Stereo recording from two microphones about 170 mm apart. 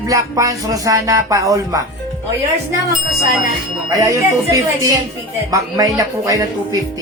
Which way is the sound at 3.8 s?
20° right (ahead or behind).